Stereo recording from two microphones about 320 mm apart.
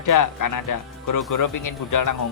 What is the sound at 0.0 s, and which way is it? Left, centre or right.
Speech, left.